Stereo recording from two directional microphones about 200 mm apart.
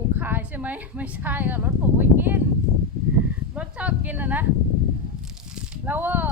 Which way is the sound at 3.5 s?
5° right (ahead or behind).